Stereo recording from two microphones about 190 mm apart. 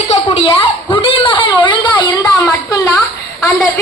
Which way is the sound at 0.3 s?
30° left (ahead or behind).